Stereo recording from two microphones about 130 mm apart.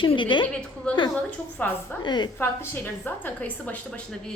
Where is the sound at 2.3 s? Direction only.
20° left (ahead or behind).